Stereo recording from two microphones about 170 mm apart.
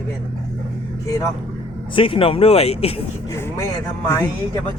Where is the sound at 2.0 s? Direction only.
30° left (ahead or behind).